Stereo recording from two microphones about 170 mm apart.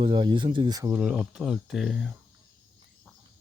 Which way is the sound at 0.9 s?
5° right (ahead or behind).